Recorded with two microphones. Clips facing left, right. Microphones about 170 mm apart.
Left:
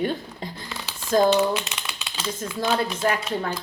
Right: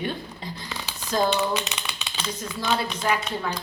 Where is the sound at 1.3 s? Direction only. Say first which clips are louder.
Left 4 dB; 5° left (ahead or behind).